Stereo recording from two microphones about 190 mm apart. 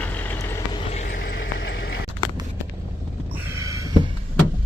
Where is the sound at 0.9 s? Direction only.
40° left (ahead or behind); by 2.0 s 65° left (ahead or behind).